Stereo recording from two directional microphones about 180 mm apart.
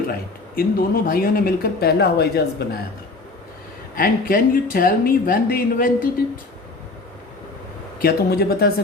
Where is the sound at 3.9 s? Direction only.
50° left (ahead or behind).